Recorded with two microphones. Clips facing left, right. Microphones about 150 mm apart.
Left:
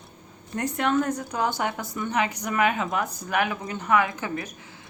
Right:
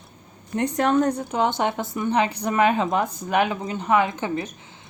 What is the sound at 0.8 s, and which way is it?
A woman's voice, 35° right (ahead or behind).